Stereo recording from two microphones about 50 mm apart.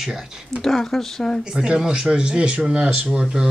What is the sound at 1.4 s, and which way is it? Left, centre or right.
Speech, centre.